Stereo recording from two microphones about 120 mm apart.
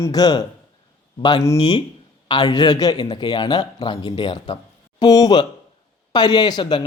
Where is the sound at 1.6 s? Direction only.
55° left (ahead or behind).